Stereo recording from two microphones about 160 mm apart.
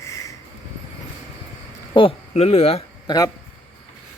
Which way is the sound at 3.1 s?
25° left (ahead or behind).